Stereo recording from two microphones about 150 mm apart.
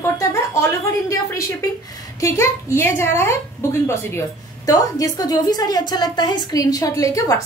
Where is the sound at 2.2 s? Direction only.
20° left (ahead or behind).